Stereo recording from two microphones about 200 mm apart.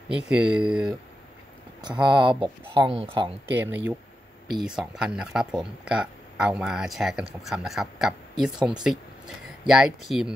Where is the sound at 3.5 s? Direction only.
10° right (ahead or behind).